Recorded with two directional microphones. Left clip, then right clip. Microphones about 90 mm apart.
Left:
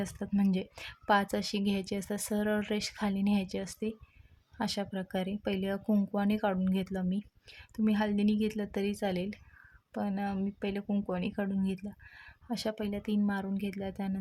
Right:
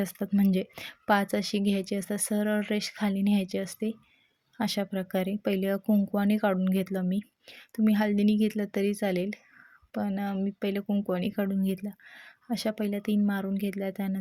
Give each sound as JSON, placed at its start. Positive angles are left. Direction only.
{"t": 0.0, "sound": "a woman's voice", "side_deg": -55}
{"t": 5.8, "sound": "speech", "side_deg": -25}
{"t": 6.1, "sound": "a woman's voice", "side_deg": -40}